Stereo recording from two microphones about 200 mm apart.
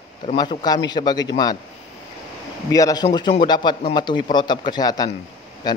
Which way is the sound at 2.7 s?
20° left (ahead or behind).